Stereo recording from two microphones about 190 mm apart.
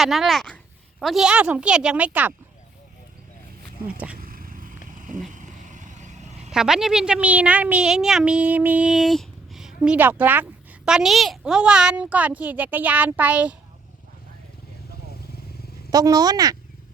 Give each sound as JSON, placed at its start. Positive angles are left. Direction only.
{"t": 0.0, "sound": "a woman's voice", "side_deg": 0}
{"t": 3.8, "sound": "a woman's voice", "side_deg": -5}
{"t": 4.2, "sound": "vehicle", "side_deg": -50}
{"t": 4.9, "sound": "a sound", "side_deg": -45}
{"t": 6.5, "sound": "a woman's voice", "side_deg": -5}
{"t": 15.9, "sound": "speech", "side_deg": -20}